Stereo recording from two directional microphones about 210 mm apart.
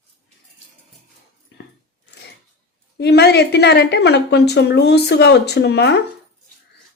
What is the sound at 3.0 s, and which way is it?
A woman's voice, 50° left (ahead or behind).